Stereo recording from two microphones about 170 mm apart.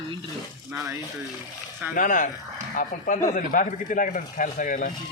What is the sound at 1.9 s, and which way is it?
Speech, 50° left (ahead or behind).